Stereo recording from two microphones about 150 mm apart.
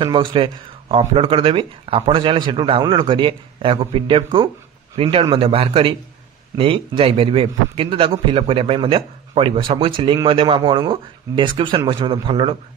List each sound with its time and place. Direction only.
0.0 s a man's voice: 30° right (ahead or behind)